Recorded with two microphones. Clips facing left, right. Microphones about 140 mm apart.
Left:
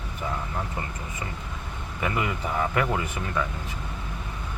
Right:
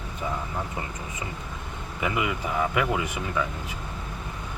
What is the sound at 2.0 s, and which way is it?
Speech, 15° right (ahead or behind).